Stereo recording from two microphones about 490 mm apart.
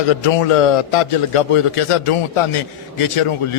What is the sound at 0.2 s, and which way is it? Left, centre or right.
A man's voice, left.